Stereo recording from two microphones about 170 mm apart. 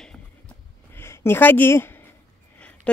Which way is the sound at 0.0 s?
5° left (ahead or behind).